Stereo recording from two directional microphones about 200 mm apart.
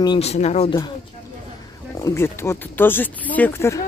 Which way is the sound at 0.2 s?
35° left (ahead or behind).